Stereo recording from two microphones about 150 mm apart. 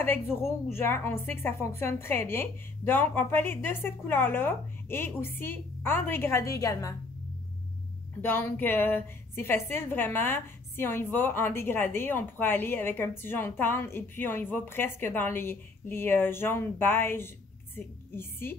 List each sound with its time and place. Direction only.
0.0 s a woman's voice: 15° left (ahead or behind)
8.2 s a woman's voice: 15° left (ahead or behind)